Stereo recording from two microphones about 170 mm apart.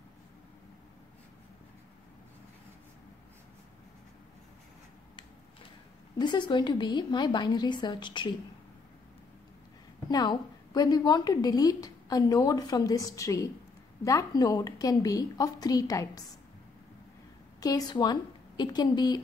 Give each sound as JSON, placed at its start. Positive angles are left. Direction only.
{"t": 6.1, "sound": "a woman's voice", "side_deg": 25}
{"t": 10.1, "sound": "a woman's voice", "side_deg": 25}
{"t": 17.6, "sound": "a woman's voice", "side_deg": 20}